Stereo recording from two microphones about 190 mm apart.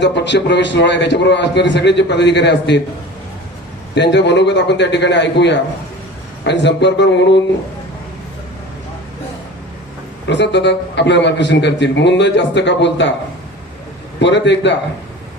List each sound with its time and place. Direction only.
0.0 s a man's voice: 65° left (ahead or behind)
3.9 s a man's voice: 65° left (ahead or behind)
10.2 s a man's voice: 65° left (ahead or behind)
14.2 s a man's voice: 70° left (ahead or behind)